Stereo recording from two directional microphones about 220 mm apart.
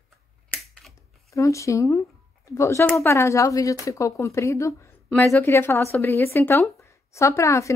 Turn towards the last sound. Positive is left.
turn(degrees=15)  # may be behind; listen again after turning